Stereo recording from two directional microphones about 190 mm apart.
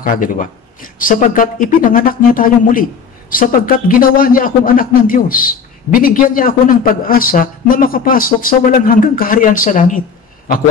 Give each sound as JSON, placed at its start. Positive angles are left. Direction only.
{"t": 0.0, "sound": "speech", "side_deg": 45}